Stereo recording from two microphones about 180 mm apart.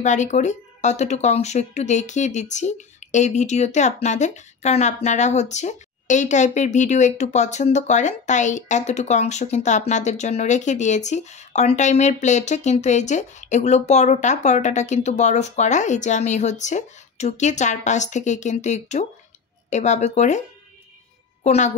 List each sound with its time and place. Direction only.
0.0 s a woman's voice: 40° left (ahead or behind)